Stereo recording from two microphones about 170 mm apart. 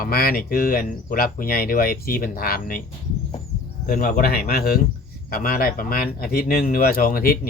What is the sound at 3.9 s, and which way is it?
Speech, 55° left (ahead or behind).